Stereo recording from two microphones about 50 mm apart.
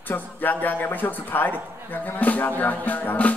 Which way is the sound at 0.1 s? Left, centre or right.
Left.